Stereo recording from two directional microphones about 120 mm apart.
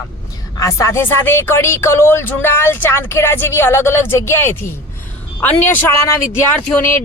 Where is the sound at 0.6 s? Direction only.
25° left (ahead or behind).